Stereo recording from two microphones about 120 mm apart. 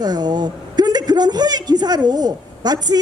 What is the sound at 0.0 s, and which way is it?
A woman's voice, 35° right (ahead or behind).